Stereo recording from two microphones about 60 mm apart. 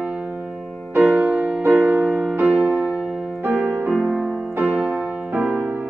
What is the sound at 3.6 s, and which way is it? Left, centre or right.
Music, right.